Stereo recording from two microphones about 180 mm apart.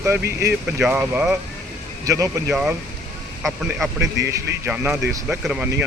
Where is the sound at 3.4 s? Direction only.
Centre (ahead or behind).